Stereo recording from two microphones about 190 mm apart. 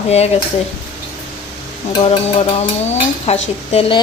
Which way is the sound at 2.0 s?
35° left (ahead or behind).